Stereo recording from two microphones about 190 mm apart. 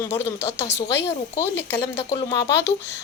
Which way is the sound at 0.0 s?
15° left (ahead or behind).